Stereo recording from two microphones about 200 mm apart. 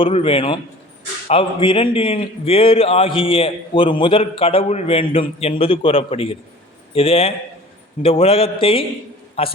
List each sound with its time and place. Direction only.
0.0 s a man's voice: 25° left (ahead or behind)